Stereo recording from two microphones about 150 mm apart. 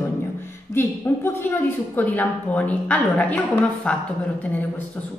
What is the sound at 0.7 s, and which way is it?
A woman's voice, 15° left (ahead or behind).